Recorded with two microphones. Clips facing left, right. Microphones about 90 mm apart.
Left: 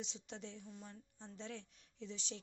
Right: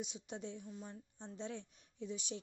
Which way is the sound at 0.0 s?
15° right (ahead or behind).